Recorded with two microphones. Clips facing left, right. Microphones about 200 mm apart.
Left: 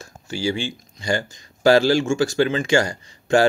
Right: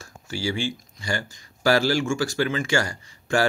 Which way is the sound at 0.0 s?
20° left (ahead or behind).